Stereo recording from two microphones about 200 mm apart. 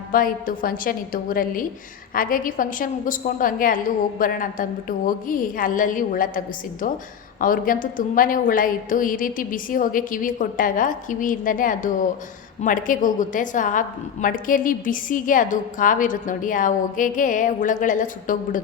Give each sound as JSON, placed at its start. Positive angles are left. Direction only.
{"t": 0.1, "sound": "a woman's voice", "side_deg": 45}